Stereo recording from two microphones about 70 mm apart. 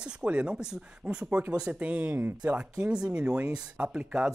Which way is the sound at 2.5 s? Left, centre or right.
Centre.